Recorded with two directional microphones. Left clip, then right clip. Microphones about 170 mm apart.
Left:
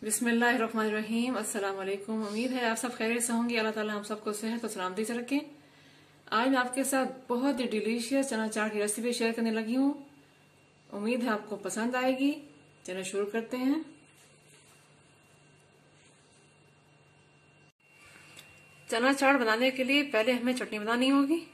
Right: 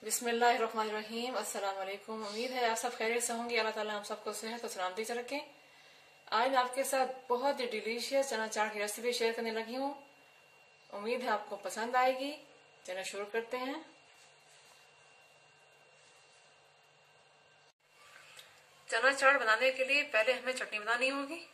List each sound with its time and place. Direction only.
0.1 s a woman's voice: 10° right (ahead or behind)
10.9 s a woman's voice: 5° right (ahead or behind)
18.9 s a woman's voice: 30° left (ahead or behind)